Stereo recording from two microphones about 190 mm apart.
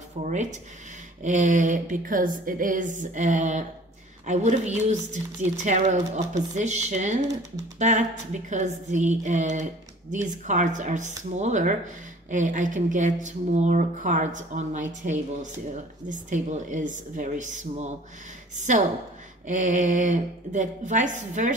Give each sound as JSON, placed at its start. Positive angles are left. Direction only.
{"t": 0.2, "sound": "a woman's voice", "side_deg": -40}